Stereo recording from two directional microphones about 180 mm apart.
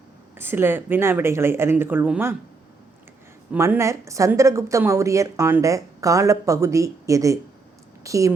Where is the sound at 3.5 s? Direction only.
15° right (ahead or behind).